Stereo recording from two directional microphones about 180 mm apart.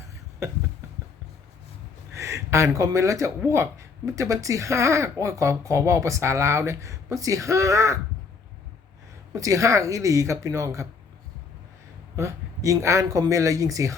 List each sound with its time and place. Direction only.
0.4 s speech: 15° right (ahead or behind)
2.1 s speech: 15° right (ahead or behind)
9.3 s speech: 15° right (ahead or behind)
12.1 s speech: 15° right (ahead or behind)